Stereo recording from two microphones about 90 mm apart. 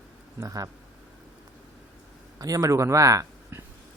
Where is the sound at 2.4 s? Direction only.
40° right (ahead or behind).